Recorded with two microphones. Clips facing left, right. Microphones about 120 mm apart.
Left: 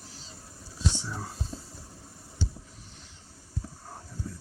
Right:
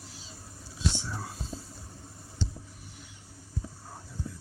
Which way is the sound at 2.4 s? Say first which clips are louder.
Even; 5° left (ahead or behind).